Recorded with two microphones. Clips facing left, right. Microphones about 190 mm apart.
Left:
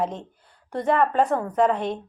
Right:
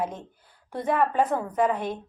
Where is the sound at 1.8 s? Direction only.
25° left (ahead or behind).